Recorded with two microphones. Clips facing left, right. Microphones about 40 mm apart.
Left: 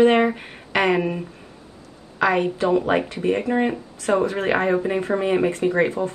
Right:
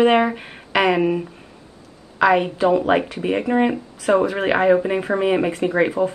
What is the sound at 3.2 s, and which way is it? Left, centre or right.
Speech, centre.